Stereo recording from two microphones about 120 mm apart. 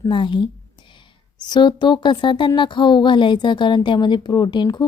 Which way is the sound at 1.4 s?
40° left (ahead or behind).